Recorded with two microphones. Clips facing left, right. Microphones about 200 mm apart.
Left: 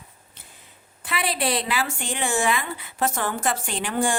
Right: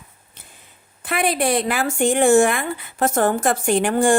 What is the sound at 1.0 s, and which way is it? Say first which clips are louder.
Speech: right 6 dB; 50° right (ahead or behind).